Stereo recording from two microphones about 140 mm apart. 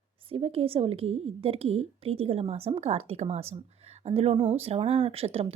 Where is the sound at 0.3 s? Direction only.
45° right (ahead or behind).